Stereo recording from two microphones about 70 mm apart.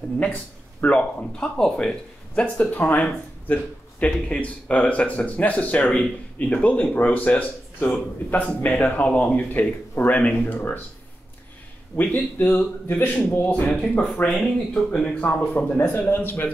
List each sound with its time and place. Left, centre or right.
0.2 s speech: centre
2.5 s speech: left
12.0 s speech: left